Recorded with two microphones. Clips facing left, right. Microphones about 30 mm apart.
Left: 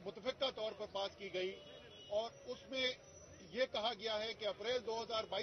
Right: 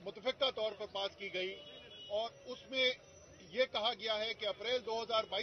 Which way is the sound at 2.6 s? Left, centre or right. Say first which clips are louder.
Right 6 dB; centre.